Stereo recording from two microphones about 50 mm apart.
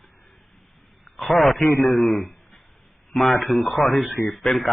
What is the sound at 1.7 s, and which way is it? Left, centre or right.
Speech, left.